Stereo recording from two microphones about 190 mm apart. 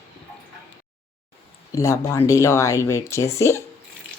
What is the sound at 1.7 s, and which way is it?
Speech, 15° left (ahead or behind).